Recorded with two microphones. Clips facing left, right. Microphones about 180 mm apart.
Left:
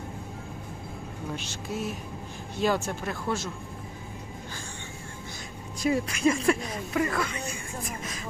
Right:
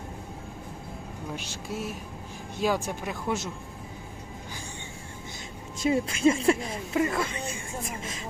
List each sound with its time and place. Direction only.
1.5 s speech: 10° right (ahead or behind)
5.8 s speech: 25° right (ahead or behind)